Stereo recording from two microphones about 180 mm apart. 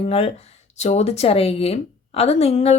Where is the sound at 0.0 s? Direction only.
35° left (ahead or behind).